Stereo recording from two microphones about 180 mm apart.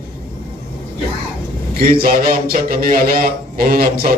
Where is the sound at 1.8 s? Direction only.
55° right (ahead or behind).